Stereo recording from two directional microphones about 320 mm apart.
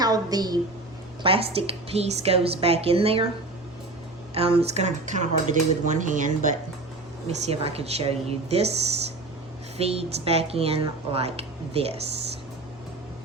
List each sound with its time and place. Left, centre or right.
0.0 s a woman's voice: centre
4.4 s speech: centre